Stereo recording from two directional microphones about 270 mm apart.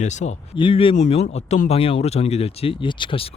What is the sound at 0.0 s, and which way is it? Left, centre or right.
A man's voice, left.